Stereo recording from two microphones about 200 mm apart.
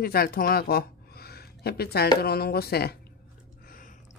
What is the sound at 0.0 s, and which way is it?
Speech, 50° left (ahead or behind).